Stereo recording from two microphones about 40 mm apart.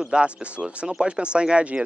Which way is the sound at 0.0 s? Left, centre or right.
Right.